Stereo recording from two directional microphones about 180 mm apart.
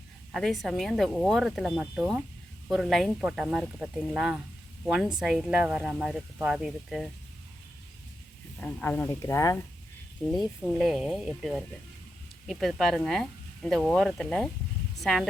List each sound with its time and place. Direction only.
0.3 s speech: centre (ahead or behind)
8.5 s speech: 10° left (ahead or behind)
10.2 s speech: 5° left (ahead or behind)